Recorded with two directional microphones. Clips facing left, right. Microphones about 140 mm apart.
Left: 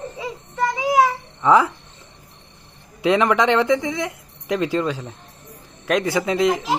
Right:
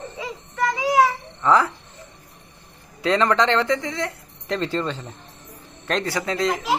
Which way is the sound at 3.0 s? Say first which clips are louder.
Left 2 dB; 15° left (ahead or behind).